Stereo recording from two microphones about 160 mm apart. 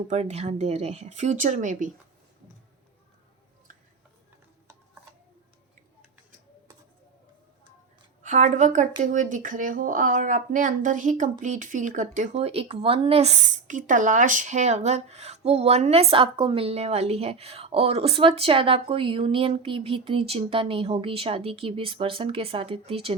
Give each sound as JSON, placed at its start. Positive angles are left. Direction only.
{"t": 0.1, "sound": "speech", "side_deg": -45}
{"t": 8.2, "sound": "speech", "side_deg": -50}